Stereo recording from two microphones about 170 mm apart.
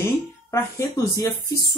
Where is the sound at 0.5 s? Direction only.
15° left (ahead or behind).